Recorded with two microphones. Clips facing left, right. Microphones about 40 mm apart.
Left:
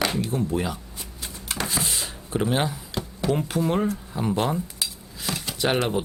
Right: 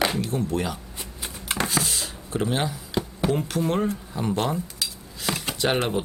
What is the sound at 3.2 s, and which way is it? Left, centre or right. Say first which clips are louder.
Speech: even; right.